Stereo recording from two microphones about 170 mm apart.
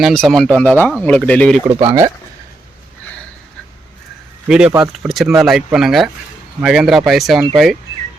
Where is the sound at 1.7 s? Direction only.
35° right (ahead or behind).